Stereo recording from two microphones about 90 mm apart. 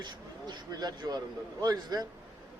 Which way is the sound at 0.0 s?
55° right (ahead or behind).